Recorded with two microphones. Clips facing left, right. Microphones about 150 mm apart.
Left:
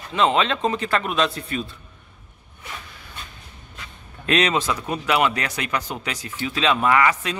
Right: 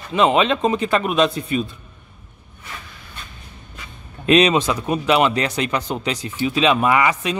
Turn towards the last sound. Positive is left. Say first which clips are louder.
# right 1 dB
turn(degrees=-20)  # may be behind; listen again after turning